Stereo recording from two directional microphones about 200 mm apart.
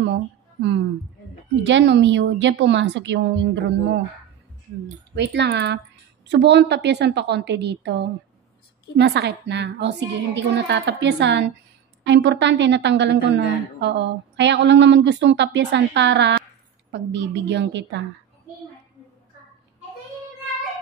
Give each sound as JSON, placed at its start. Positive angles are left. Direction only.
{"t": 0.0, "sound": "a sound", "side_deg": -60}
{"t": 1.6, "sound": "a woman's voice", "side_deg": -60}
{"t": 5.1, "sound": "a woman's voice", "side_deg": -60}